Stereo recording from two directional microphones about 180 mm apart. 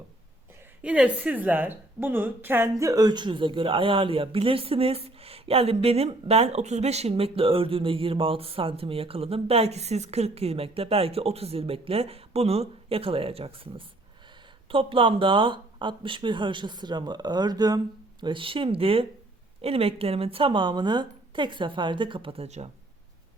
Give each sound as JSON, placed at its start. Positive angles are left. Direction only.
{"t": 0.8, "sound": "a woman's voice", "side_deg": -5}